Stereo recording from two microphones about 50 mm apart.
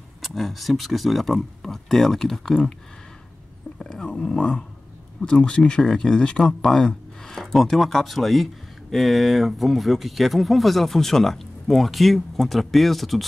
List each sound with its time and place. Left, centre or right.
0.2 s speech: centre
3.8 s a sound: centre
5.2 s speech: centre